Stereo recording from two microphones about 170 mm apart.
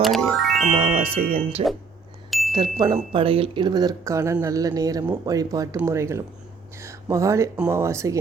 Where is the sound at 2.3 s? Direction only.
Centre (ahead or behind).